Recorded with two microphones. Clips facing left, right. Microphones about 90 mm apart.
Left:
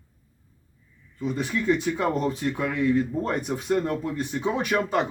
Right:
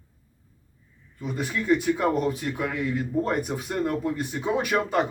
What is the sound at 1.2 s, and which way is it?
Speech, 5° right (ahead or behind).